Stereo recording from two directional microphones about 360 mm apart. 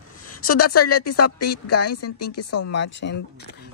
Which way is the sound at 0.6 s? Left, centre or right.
Left.